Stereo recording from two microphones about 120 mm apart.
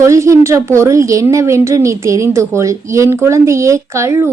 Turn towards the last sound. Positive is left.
turn(degrees=-25)  # may be behind; listen again after turning